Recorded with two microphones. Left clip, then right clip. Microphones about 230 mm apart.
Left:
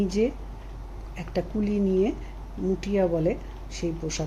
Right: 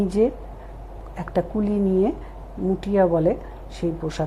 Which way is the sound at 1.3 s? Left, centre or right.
Centre.